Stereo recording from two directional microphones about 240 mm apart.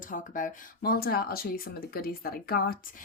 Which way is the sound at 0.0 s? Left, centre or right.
Left.